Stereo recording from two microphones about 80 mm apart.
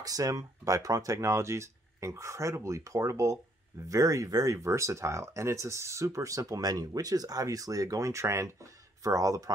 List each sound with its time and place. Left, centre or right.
0.0 s speech: right